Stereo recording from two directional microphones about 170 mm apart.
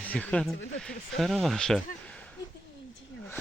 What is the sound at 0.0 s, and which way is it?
Speech, 10° left (ahead or behind).